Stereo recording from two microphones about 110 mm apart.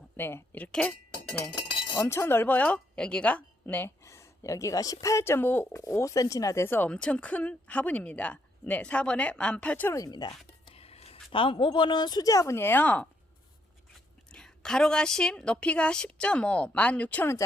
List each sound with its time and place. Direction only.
0.2 s speech: 20° left (ahead or behind)
2.0 s speech: 20° left (ahead or behind)
9.9 s speech: 35° left (ahead or behind)
10.8 s a woman's voice: 65° left (ahead or behind); by 13.1 s 15° left (ahead or behind)
14.3 s speech: 5° left (ahead or behind)